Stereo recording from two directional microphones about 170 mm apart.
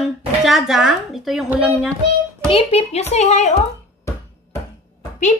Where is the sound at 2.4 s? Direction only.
35° left (ahead or behind).